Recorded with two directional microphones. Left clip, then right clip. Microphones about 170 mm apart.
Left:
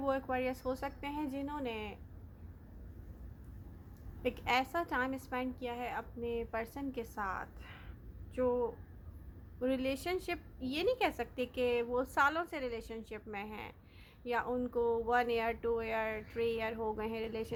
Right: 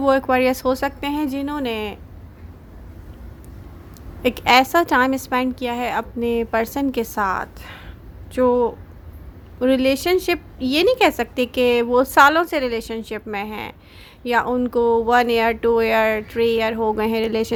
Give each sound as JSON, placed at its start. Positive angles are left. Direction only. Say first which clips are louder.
{"t": 0.0, "sound": "a woman's voice", "louder": "right 18 dB", "side_deg": -40}
{"t": 4.2, "sound": "a woman's voice", "louder": "right 18 dB", "side_deg": -35}